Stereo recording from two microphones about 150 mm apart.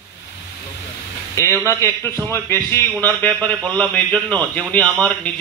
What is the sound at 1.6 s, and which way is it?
A man's voice, 20° left (ahead or behind).